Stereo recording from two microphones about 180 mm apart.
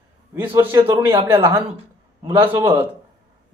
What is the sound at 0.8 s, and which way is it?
Speech, 20° right (ahead or behind).